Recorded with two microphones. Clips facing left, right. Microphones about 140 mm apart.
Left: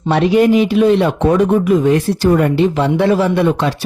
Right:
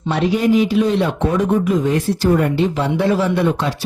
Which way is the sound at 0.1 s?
70° left (ahead or behind).